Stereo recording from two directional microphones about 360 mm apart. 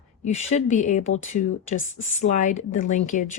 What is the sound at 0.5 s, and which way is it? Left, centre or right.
A woman's voice, centre.